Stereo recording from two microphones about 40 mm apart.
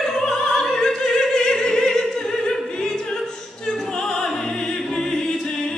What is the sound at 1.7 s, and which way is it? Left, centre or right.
Opera, centre.